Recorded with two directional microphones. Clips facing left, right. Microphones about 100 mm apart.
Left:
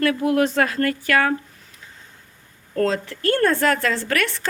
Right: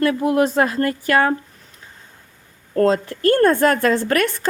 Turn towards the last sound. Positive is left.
turn(degrees=-45)  # may be behind; listen again after turning